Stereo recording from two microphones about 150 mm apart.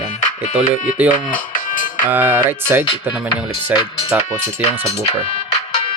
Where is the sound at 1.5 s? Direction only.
65° left (ahead or behind).